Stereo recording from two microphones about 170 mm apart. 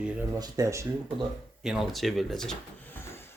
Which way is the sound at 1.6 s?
Centre (ahead or behind).